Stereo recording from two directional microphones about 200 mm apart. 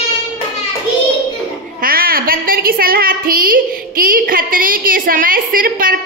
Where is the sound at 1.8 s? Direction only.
45° right (ahead or behind).